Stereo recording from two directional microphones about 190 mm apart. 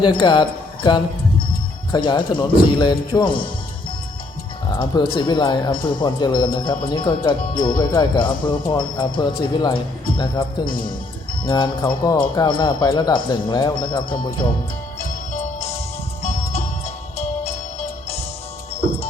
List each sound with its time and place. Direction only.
0.0 s speech: 25° left (ahead or behind)
4.8 s speech: 25° left (ahead or behind)
15.3 s music: 35° left (ahead or behind)